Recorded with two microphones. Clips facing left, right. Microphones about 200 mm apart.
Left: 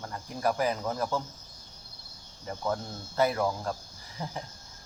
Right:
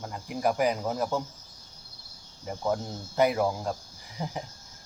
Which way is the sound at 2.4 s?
15° right (ahead or behind).